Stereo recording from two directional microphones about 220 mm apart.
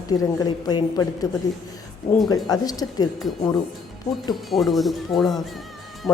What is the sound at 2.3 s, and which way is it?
A woman's voice, 15° left (ahead or behind).